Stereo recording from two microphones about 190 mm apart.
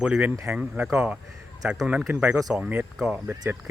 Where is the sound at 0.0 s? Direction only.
5° right (ahead or behind).